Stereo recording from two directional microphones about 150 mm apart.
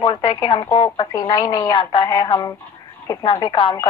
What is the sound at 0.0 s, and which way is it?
Speech, 35° left (ahead or behind).